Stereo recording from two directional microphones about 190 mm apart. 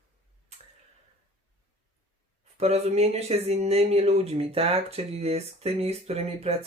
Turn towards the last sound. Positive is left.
turn(degrees=-35)  # may be behind; listen again after turning